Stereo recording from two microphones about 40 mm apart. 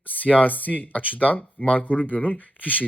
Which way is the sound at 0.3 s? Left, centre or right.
Left.